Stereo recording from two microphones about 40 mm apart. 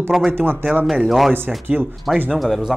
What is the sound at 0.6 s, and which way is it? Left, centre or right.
Speech, right.